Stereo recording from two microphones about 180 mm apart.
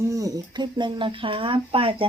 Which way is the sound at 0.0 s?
20° right (ahead or behind).